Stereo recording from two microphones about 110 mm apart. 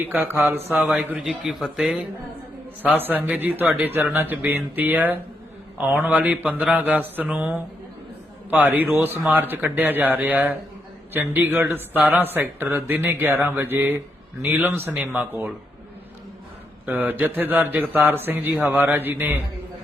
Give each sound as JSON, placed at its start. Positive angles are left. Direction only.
{"t": 0.0, "sound": "speech", "side_deg": -15}
{"t": 1.2, "sound": "speech", "side_deg": 0}
{"t": 3.2, "sound": "speech", "side_deg": -15}
{"t": 16.8, "sound": "a man's voice", "side_deg": -15}